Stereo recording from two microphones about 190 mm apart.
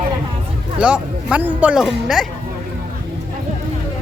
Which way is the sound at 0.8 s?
5° right (ahead or behind).